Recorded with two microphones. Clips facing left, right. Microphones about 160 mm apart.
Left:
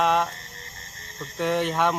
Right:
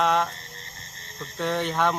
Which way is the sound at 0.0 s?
5° left (ahead or behind).